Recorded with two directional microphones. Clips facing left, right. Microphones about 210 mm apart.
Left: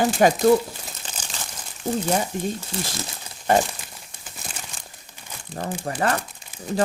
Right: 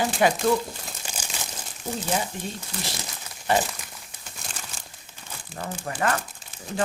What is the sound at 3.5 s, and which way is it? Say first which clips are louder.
Speech: left 4 dB; 50° left (ahead or behind).